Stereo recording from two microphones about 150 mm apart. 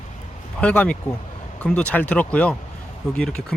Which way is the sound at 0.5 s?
10° left (ahead or behind).